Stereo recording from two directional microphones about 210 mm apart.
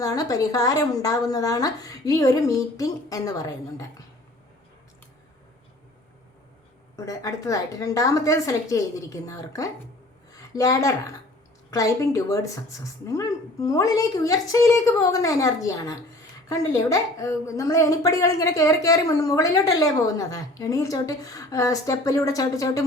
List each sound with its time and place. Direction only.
0.0 s a woman's voice: 15° left (ahead or behind)
6.9 s a woman's voice: 15° left (ahead or behind)